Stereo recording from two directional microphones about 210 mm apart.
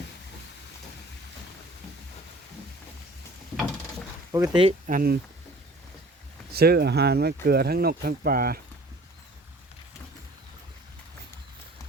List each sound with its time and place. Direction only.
4.3 s speech: 15° right (ahead or behind)
4.9 s speech: 40° right (ahead or behind)
6.5 s speech: 50° right (ahead or behind)